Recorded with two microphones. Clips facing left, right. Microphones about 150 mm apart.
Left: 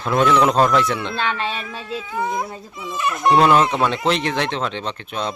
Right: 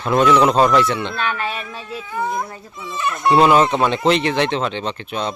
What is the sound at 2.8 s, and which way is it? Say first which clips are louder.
Speech: even; 5° left (ahead or behind).